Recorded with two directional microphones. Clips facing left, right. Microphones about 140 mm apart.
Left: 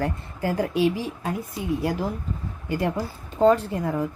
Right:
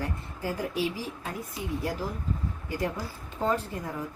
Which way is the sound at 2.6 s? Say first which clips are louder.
Left 7 dB; 70° left (ahead or behind).